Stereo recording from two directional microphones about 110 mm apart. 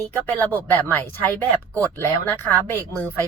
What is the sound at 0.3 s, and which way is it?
Speech, 15° left (ahead or behind).